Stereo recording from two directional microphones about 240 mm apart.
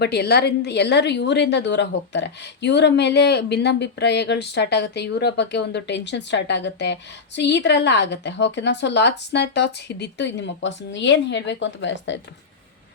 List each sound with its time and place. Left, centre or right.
0.0 s a woman's voice: left